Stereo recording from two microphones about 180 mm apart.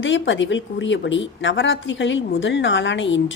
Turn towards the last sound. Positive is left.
turn(degrees=90)